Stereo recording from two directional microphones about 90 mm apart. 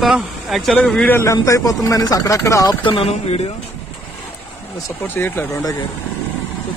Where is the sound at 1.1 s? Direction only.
35° left (ahead or behind).